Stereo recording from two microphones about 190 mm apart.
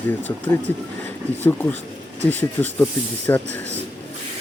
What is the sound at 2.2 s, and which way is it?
Speech, 10° left (ahead or behind).